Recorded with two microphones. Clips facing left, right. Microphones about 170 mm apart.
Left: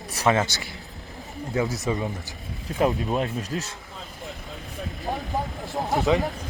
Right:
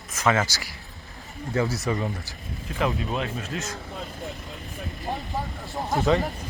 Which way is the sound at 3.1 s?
40° left (ahead or behind).